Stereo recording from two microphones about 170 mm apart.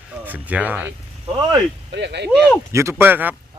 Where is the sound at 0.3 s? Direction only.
10° right (ahead or behind).